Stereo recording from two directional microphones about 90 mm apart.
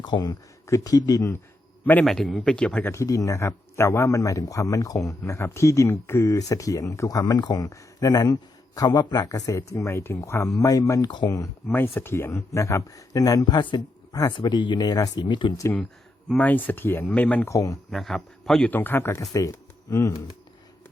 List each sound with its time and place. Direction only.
0.0 s speech: 55° left (ahead or behind)
1.8 s a man's voice: 20° left (ahead or behind)
2.0 s speech: centre (ahead or behind)
2.8 s a man's voice: 30° left (ahead or behind)
11.7 s a man's voice: 20° left (ahead or behind); by 13.6 s 45° left (ahead or behind)
13.6 s speech: 60° left (ahead or behind)
16.3 s speech: 20° left (ahead or behind)
17.4 s a man's voice: 35° left (ahead or behind)
17.9 s a man's voice: 5° left (ahead or behind)
18.7 s speech: 20° left (ahead or behind)
19.3 s speech: 40° left (ahead or behind)